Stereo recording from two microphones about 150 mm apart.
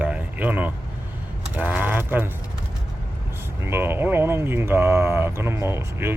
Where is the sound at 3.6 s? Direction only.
15° right (ahead or behind).